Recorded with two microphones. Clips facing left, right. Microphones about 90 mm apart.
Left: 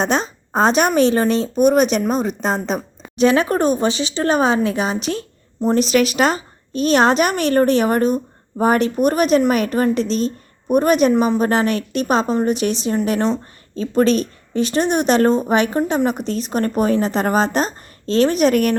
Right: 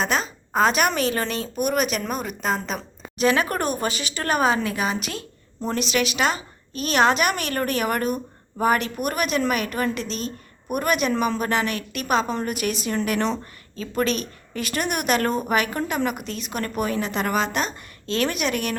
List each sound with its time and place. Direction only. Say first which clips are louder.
0.0 s a woman's voice: left 5 dB; 35° left (ahead or behind)